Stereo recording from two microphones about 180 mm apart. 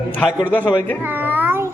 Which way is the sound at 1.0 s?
10° right (ahead or behind).